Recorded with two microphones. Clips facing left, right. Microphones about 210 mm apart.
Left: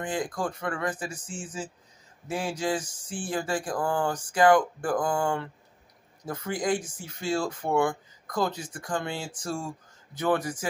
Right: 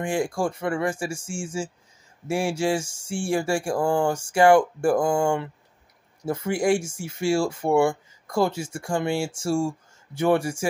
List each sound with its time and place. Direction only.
0.0 s speech: 25° right (ahead or behind)